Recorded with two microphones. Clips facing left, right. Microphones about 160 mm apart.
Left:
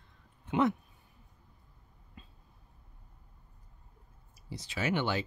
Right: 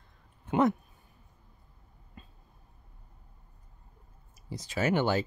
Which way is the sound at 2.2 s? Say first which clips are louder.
Right 2 dB; 50° right (ahead or behind).